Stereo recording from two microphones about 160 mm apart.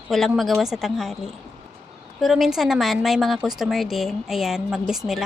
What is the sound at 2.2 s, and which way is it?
A woman's voice, centre (ahead or behind).